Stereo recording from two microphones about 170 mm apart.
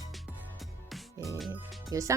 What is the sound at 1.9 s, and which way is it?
Speech, 20° right (ahead or behind).